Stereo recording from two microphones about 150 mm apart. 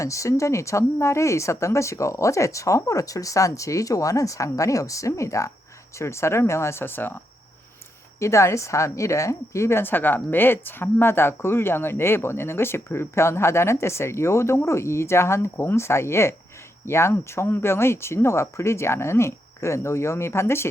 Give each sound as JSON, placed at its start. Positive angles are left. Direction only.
{"t": 0.0, "sound": "a woman's voice", "side_deg": 20}
{"t": 8.2, "sound": "a woman's voice", "side_deg": 20}